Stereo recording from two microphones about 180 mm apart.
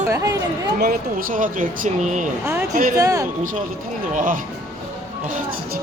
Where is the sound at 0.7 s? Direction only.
55° right (ahead or behind).